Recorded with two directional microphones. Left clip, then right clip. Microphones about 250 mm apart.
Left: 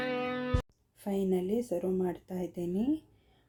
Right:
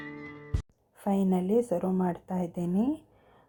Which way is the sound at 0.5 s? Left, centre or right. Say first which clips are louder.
Left 9 dB; centre.